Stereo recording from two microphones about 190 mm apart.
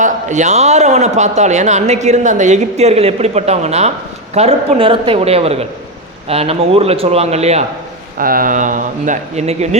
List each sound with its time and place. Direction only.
0.0 s a man's voice: 40° right (ahead or behind)
8.2 s speech: 50° right (ahead or behind)